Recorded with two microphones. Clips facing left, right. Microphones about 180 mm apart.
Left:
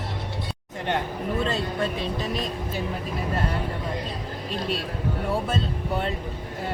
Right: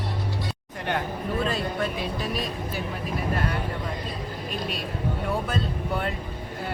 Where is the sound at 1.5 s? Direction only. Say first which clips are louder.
Left 1 dB; 25° left (ahead or behind).